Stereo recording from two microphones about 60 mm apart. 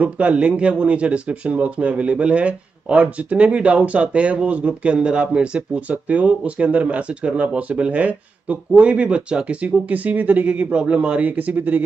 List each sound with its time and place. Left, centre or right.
0.0 s speech: right